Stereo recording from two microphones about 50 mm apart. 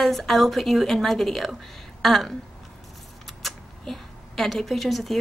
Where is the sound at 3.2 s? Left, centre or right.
Centre.